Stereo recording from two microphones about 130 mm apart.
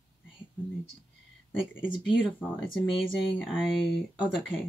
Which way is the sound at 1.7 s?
15° left (ahead or behind).